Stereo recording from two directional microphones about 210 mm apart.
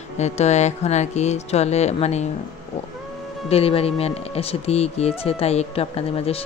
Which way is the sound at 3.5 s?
30° left (ahead or behind).